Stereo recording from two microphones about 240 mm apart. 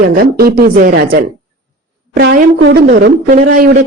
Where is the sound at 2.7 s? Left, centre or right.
Right.